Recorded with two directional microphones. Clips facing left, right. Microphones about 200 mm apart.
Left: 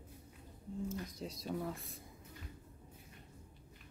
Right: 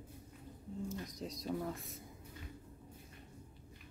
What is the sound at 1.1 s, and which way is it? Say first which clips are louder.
Speech: right 1 dB; centre (ahead or behind).